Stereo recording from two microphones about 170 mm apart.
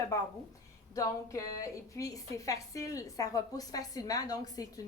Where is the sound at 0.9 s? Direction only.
20° left (ahead or behind).